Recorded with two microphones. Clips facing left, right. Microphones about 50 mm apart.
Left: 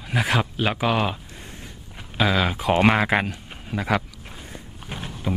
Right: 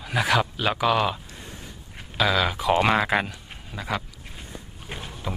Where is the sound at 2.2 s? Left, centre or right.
Left.